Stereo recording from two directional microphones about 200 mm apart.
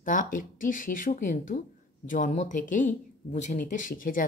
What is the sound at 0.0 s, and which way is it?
Speech, 40° left (ahead or behind).